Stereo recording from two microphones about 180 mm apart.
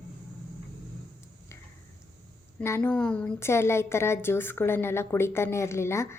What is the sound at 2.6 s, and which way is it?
A woman's voice, 10° left (ahead or behind).